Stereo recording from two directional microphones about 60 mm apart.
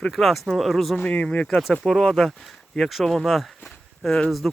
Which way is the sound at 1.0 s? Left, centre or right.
Left.